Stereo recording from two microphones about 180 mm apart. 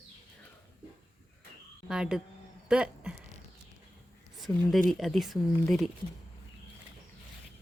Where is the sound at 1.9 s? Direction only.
5° right (ahead or behind).